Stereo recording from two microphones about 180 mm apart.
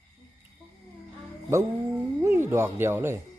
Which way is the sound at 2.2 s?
15° right (ahead or behind).